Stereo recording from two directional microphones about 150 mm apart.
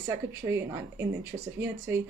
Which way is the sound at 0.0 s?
15° right (ahead or behind).